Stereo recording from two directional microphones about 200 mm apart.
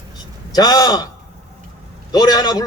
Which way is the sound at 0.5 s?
20° left (ahead or behind).